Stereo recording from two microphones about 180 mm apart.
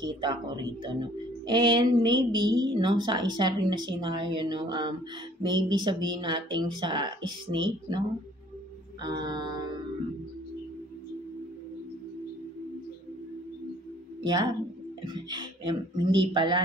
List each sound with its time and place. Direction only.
0.0 s a woman's voice: 25° right (ahead or behind)
9.0 s a woman's voice: 25° right (ahead or behind)
14.2 s a woman's voice: 25° right (ahead or behind)